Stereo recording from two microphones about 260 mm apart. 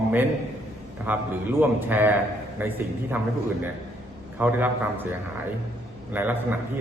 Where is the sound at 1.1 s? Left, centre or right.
Centre.